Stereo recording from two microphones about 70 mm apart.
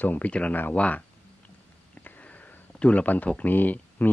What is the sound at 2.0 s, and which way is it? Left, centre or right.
Speech, left.